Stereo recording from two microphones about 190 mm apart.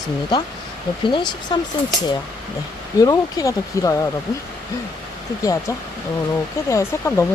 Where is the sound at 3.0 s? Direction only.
15° left (ahead or behind).